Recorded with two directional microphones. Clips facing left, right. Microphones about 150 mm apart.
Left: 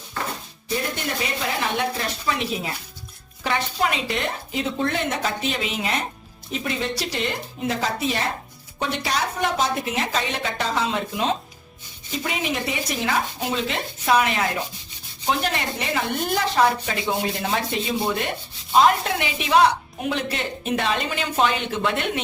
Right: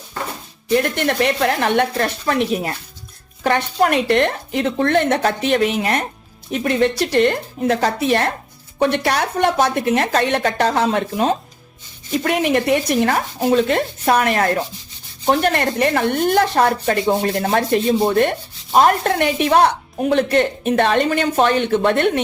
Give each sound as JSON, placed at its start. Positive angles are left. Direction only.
{"t": 0.7, "sound": "speech", "side_deg": -65}